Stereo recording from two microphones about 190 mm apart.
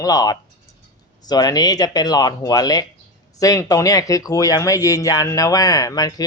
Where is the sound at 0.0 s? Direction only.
20° left (ahead or behind).